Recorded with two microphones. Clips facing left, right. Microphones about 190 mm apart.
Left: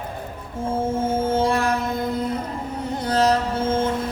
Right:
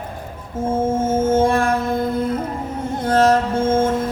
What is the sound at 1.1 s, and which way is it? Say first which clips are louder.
Music: right 5 dB; 45° right (ahead or behind).